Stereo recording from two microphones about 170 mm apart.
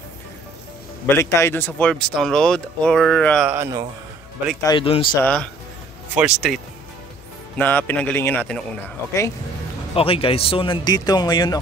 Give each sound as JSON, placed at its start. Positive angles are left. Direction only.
{"t": 1.0, "sound": "speech", "side_deg": 15}
{"t": 3.4, "sound": "speech", "side_deg": -15}
{"t": 4.6, "sound": "speech", "side_deg": 30}
{"t": 5.2, "sound": "speech", "side_deg": 5}
{"t": 7.5, "sound": "speech", "side_deg": 10}
{"t": 9.9, "sound": "speech", "side_deg": 35}